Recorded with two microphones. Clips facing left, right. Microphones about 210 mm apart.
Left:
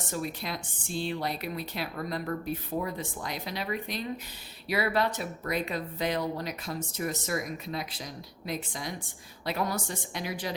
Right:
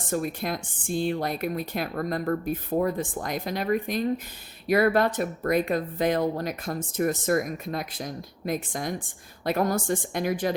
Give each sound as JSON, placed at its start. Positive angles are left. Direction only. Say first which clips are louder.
{"t": 0.1, "sound": "speech", "louder": "right 7 dB", "side_deg": -50}